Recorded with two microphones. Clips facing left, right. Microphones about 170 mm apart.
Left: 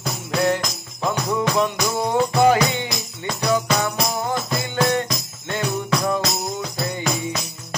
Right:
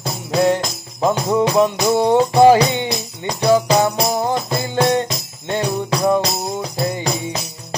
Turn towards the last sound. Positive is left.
turn(degrees=-30)  # may be behind; listen again after turning